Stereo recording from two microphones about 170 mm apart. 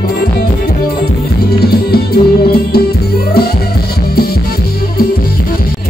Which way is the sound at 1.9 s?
65° left (ahead or behind).